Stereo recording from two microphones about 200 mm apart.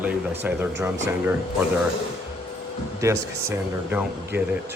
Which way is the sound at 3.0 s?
15° right (ahead or behind).